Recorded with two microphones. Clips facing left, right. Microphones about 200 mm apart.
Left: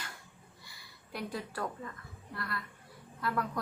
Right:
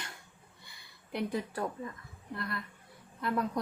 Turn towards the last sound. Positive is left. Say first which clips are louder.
# right 3 dB
turn(degrees=-20)  # may be behind; listen again after turning